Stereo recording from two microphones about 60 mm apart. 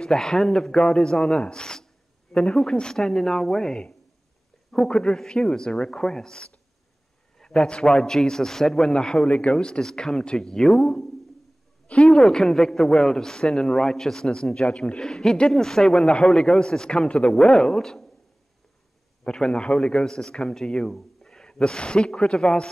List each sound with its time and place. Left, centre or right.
0.0 s a man's voice: centre
12.1 s a man's voice: centre
19.2 s a man's voice: centre